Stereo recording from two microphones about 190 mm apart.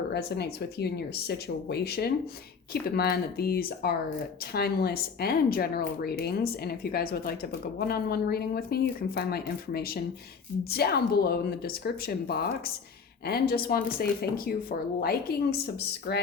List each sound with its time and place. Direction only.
0.1 s speech: 60° left (ahead or behind)